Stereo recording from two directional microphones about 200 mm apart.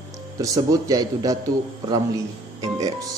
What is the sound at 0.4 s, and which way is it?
Speech, 20° right (ahead or behind).